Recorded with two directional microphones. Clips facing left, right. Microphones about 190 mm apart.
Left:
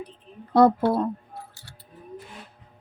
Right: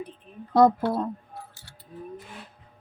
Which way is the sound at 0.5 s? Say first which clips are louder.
Left 2 dB; 65° left (ahead or behind).